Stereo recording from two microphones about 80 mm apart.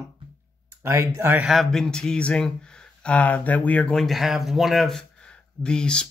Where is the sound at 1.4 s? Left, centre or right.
Centre.